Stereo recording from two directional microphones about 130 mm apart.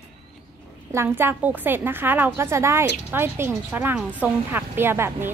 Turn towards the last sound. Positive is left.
turn(degrees=-20)  # may be behind; listen again after turning